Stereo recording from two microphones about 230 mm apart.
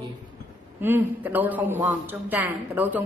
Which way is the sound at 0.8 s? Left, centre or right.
Centre.